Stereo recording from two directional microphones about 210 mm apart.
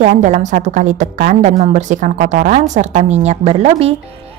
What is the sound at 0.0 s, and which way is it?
A woman's voice, 35° right (ahead or behind).